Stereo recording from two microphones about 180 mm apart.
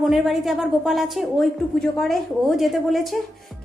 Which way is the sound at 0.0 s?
Centre (ahead or behind).